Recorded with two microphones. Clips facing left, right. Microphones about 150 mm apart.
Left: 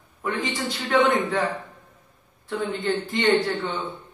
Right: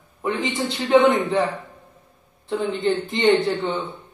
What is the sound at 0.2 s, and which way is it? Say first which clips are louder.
A man's voice: right 3 dB; 25° right (ahead or behind).